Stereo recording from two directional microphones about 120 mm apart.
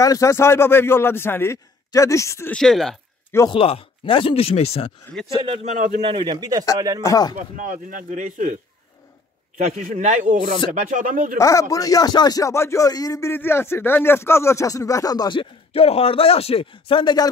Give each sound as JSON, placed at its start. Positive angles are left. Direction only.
{"t": 0.0, "sound": "speech", "side_deg": 25}
{"t": 2.5, "sound": "speech", "side_deg": 0}
{"t": 3.4, "sound": "speech", "side_deg": 50}
{"t": 5.5, "sound": "a man's voice", "side_deg": -80}
{"t": 6.0, "sound": "a man's voice", "side_deg": -45}
{"t": 7.0, "sound": "speech", "side_deg": 30}
{"t": 7.9, "sound": "speech", "side_deg": -90}
{"t": 9.8, "sound": "speech", "side_deg": -90}
{"t": 11.3, "sound": "speech", "side_deg": 25}
{"t": 13.3, "sound": "speech", "side_deg": 20}